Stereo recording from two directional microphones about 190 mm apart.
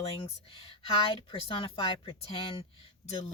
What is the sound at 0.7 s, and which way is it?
A woman's voice, 30° left (ahead or behind).